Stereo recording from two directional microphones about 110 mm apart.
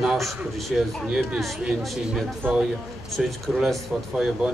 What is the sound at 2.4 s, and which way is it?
Speech, 15° right (ahead or behind).